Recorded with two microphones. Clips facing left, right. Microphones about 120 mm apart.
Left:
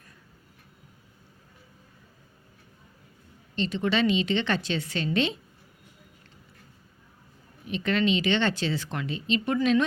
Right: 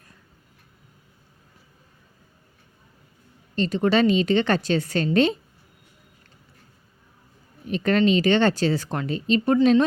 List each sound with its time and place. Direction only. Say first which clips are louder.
3.5 s a woman's voice: right 6 dB; 45° right (ahead or behind)
7.7 s speech: right 5 dB; 45° right (ahead or behind)